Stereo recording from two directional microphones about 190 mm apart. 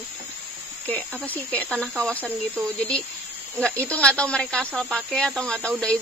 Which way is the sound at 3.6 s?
5° left (ahead or behind).